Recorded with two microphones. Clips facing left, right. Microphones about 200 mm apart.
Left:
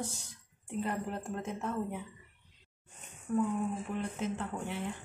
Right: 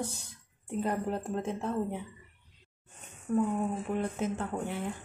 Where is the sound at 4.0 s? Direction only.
50° right (ahead or behind).